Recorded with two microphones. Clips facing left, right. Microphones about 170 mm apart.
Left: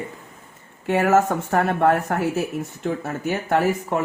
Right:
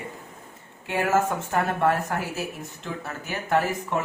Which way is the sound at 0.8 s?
65° left (ahead or behind).